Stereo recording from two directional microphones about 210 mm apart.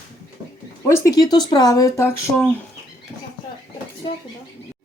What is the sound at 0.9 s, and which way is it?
Speech, 15° left (ahead or behind).